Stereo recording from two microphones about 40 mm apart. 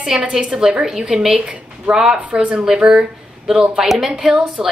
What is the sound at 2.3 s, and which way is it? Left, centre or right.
Speech, right.